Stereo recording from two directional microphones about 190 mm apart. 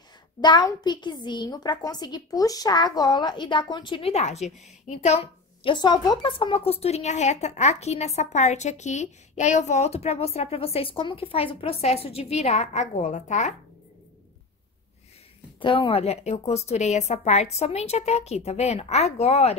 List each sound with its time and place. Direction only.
0.4 s a woman's voice: 20° left (ahead or behind); by 13.6 s 40° left (ahead or behind)
15.6 s a woman's voice: 25° left (ahead or behind)